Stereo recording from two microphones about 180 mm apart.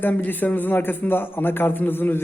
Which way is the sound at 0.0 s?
10° left (ahead or behind).